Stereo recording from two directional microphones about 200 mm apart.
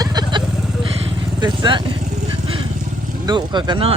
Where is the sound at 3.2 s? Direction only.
20° right (ahead or behind).